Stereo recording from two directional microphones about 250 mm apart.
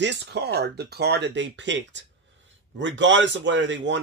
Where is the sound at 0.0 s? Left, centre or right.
Right.